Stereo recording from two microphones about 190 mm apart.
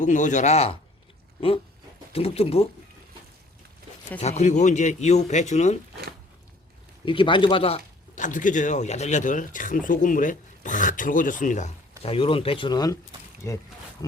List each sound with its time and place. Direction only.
0.0 s speech: 40° left (ahead or behind)
2.1 s speech: 30° left (ahead or behind)
4.2 s speech: 35° left (ahead or behind)
7.0 s speech: 25° left (ahead or behind)